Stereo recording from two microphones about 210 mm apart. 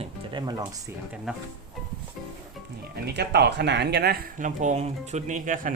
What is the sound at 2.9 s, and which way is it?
Speech, 50° right (ahead or behind).